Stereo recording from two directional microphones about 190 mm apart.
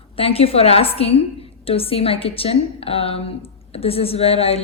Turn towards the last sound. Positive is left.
turn(degrees=30)  # may be behind; listen again after turning